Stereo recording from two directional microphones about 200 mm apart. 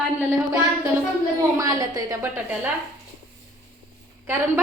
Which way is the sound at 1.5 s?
15° right (ahead or behind).